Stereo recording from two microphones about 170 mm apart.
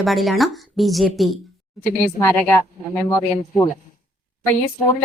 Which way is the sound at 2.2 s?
10° left (ahead or behind).